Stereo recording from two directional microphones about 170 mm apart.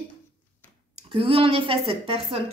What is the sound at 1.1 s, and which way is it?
Speech, 30° right (ahead or behind).